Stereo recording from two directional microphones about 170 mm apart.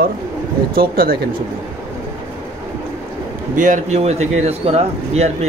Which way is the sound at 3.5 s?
50° right (ahead or behind).